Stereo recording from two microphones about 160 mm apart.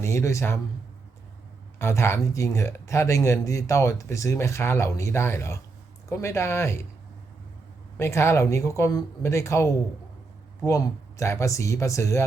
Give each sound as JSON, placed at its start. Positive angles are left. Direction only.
{"t": 0.0, "sound": "speech", "side_deg": 15}
{"t": 1.8, "sound": "speech", "side_deg": 15}
{"t": 7.9, "sound": "speech", "side_deg": 15}